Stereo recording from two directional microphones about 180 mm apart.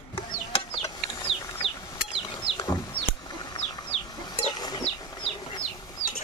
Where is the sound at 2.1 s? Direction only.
25° left (ahead or behind).